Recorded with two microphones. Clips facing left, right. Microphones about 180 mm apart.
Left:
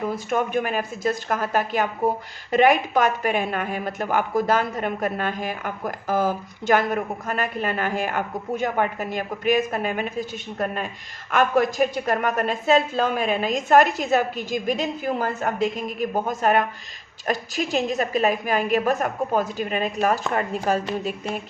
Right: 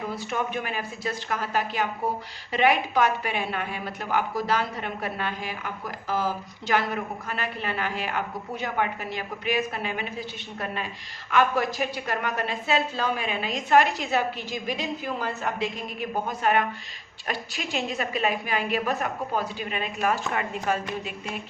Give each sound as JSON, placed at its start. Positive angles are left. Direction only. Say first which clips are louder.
{"t": 0.3, "sound": "speech", "louder": "left 7 dB", "side_deg": 50}